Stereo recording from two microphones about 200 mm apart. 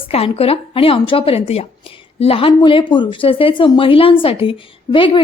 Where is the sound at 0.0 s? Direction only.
30° left (ahead or behind).